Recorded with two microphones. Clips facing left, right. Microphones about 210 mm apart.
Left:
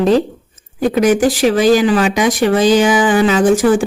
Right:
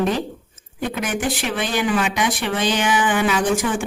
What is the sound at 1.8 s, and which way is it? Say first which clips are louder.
Speech: left 7 dB; 90° left.